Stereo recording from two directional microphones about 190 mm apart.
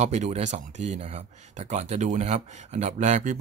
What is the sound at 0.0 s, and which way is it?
Speech, 35° right (ahead or behind).